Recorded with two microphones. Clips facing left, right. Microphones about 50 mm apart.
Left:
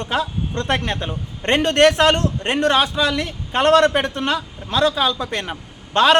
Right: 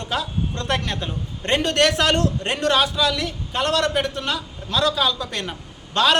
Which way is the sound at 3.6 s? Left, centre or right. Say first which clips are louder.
Left 7 dB; left.